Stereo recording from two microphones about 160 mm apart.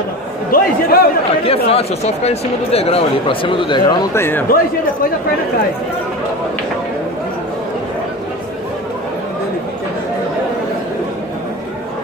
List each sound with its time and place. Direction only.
0.5 s a man's voice: 70° left (ahead or behind)
1.4 s speech: 40° left (ahead or behind)
4.1 s speech: 15° left (ahead or behind)